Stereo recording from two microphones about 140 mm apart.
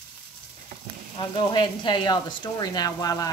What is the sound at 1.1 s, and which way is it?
Speech, 30° left (ahead or behind).